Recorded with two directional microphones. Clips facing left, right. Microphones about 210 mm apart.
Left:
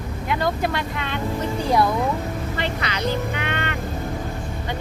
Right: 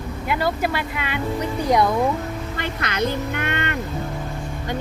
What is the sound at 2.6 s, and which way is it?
Speech, 50° right (ahead or behind).